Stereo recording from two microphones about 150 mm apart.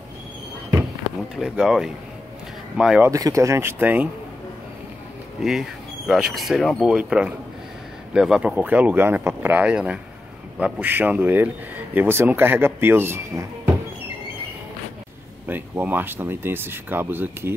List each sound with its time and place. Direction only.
1.3 s speech: 5° right (ahead or behind)
3.0 s speech: 20° right (ahead or behind)
5.4 s speech: 5° right (ahead or behind)
15.4 s speech: 10° right (ahead or behind)